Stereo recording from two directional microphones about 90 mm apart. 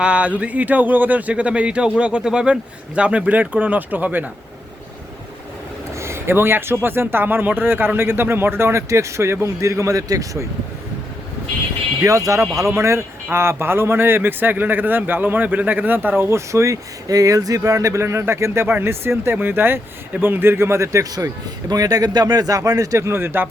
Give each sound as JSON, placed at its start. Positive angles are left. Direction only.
{"t": 0.0, "sound": "speech", "side_deg": -15}
{"t": 6.0, "sound": "a sound", "side_deg": -30}
{"t": 6.8, "sound": "a man's voice", "side_deg": -25}
{"t": 11.9, "sound": "a man's voice", "side_deg": -35}